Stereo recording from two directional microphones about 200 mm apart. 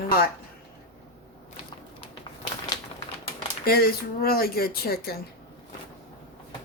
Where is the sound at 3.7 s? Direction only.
50° left (ahead or behind).